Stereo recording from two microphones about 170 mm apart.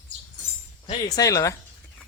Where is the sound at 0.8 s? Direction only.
25° left (ahead or behind).